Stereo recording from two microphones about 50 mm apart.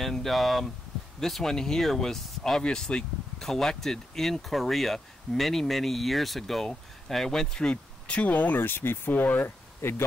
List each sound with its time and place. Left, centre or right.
0.0 s speech: centre
7.7 s speech: left
9.8 s speech: left